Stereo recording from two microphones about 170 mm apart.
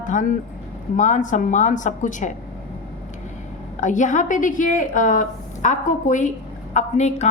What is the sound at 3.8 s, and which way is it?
A woman's voice, 45° left (ahead or behind).